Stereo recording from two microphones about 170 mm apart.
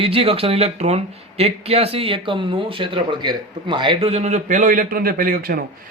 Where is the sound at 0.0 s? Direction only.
35° right (ahead or behind).